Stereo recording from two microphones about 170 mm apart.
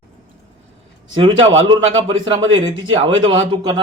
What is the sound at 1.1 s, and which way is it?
Speech, 30° right (ahead or behind).